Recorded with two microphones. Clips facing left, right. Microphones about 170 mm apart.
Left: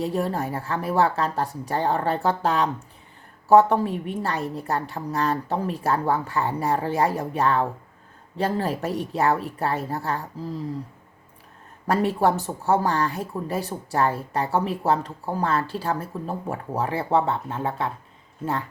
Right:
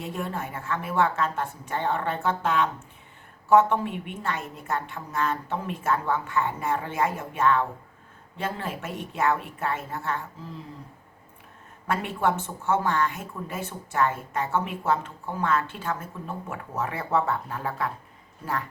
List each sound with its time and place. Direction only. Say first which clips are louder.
0.0 s speech: left 7 dB; 35° left (ahead or behind)
11.9 s speech: left 5 dB; 35° left (ahead or behind)